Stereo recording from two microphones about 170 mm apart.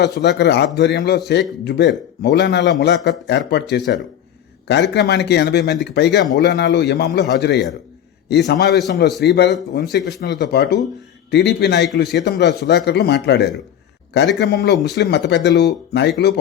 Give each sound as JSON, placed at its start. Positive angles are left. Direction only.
{"t": 0.0, "sound": "a man's voice", "side_deg": 80}
{"t": 4.9, "sound": "a man's voice", "side_deg": 80}
{"t": 11.3, "sound": "a man's voice", "side_deg": 80}